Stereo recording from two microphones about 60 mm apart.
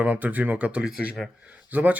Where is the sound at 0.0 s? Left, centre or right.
Right.